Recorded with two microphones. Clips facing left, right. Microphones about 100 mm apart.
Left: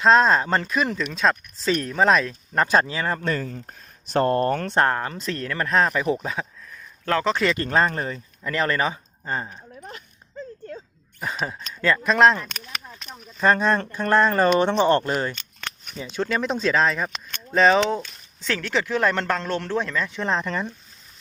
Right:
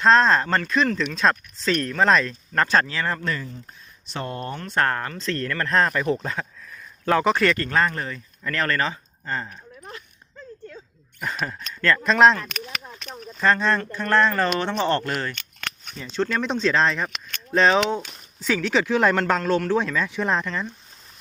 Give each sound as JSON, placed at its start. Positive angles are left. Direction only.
{"t": 0.0, "sound": "speech", "side_deg": 5}
{"t": 1.7, "sound": "speech", "side_deg": 10}
{"t": 4.1, "sound": "speech", "side_deg": 50}
{"t": 4.7, "sound": "speech", "side_deg": 20}
{"t": 7.0, "sound": "speech", "side_deg": -10}
{"t": 7.5, "sound": "speech", "side_deg": 20}
{"t": 8.4, "sound": "speech", "side_deg": 15}
{"t": 11.4, "sound": "speech", "side_deg": 10}
{"t": 16.0, "sound": "speech", "side_deg": 10}
{"t": 19.2, "sound": "speech", "side_deg": -5}
{"t": 20.2, "sound": "speech", "side_deg": 0}